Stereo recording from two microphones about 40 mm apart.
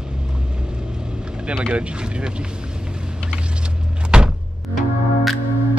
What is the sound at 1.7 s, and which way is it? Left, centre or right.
Speech, right.